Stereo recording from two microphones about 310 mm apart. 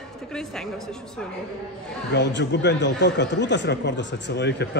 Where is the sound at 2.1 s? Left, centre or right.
Left.